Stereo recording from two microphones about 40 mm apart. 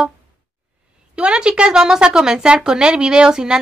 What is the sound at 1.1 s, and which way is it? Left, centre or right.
A woman's voice, right.